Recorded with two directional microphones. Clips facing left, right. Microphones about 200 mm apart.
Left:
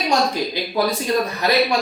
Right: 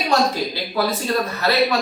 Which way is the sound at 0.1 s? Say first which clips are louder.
Right 1 dB; 15° left (ahead or behind).